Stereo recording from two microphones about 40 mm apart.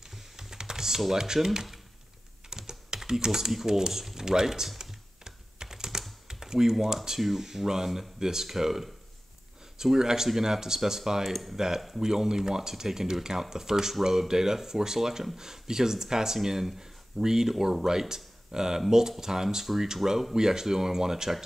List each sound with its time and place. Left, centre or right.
0.1 s typing: centre
3.0 s speech: centre
4.7 s typing: centre
6.2 s speech: centre